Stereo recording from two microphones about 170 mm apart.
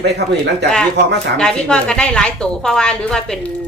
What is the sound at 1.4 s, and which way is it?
A woman's voice, 5° left (ahead or behind).